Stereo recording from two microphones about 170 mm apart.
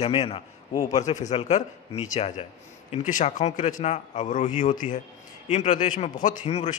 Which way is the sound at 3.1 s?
45° left (ahead or behind).